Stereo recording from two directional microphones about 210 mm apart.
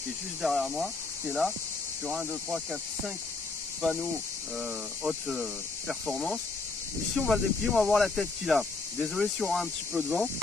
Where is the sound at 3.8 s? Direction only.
Centre (ahead or behind).